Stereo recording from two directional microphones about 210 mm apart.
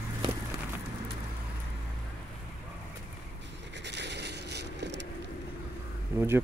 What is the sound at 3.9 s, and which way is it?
Vehicle, 55° right (ahead or behind).